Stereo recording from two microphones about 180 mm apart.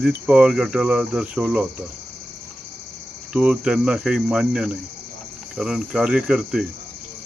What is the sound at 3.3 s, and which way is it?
Cricket, 5° right (ahead or behind).